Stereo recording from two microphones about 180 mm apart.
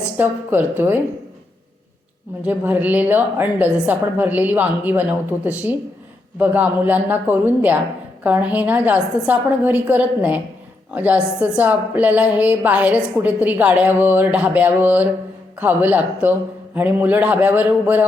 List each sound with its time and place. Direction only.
0.2 s a woman's voice: 10° right (ahead or behind)
2.4 s a woman's voice: 10° right (ahead or behind)